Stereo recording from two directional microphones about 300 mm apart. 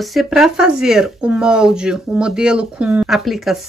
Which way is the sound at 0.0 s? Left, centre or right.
Centre.